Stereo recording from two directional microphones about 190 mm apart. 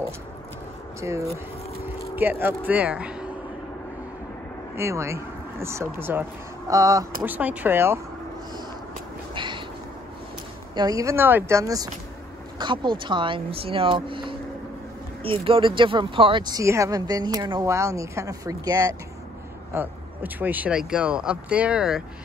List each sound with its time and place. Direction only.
1.0 s speech: 15° right (ahead or behind)
4.7 s speech: 15° right (ahead or behind)
9.3 s a sound: 25° right (ahead or behind)
10.7 s speech: 20° right (ahead or behind); by 22.0 s 5° right (ahead or behind)